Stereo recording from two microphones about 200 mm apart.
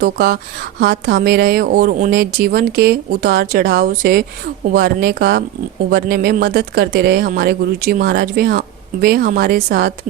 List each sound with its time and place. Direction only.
0.0 s speech: 50° right (ahead or behind)